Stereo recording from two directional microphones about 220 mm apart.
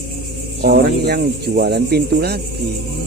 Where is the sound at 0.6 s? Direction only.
45° right (ahead or behind).